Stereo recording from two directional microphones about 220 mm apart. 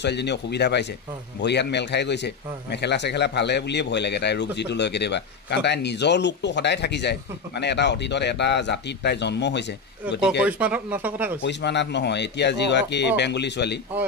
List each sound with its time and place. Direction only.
0.0 s speech: 50° left (ahead or behind)
10.4 s speech: 5° right (ahead or behind)
11.4 s speech: 50° left (ahead or behind)